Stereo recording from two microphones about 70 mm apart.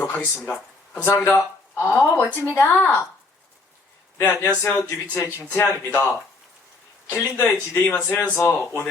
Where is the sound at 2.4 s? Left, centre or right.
Left.